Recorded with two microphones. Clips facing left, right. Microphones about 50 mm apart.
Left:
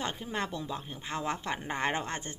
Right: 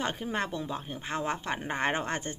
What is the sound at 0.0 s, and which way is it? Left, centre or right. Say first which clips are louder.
Speech: right 3 dB; right.